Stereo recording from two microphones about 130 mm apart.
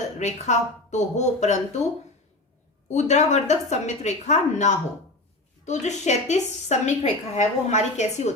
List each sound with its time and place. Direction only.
0.2 s a woman's voice: 60° left (ahead or behind)
2.9 s a woman's voice: 60° left (ahead or behind)